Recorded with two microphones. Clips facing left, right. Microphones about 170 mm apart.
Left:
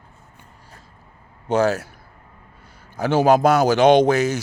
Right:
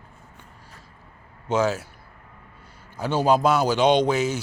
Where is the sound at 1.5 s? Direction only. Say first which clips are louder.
Left 4 dB; 65° left (ahead or behind).